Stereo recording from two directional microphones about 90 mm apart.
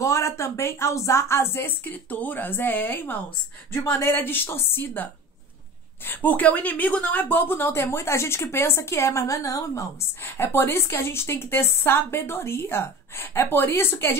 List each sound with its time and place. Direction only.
0.0 s a woman's voice: 35° left (ahead or behind)
10.2 s a woman's voice: 25° left (ahead or behind)